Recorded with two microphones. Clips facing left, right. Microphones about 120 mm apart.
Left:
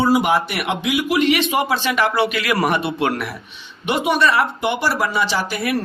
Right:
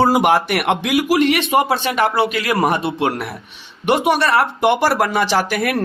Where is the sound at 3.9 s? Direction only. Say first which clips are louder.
Right 2 dB; 60° right (ahead or behind).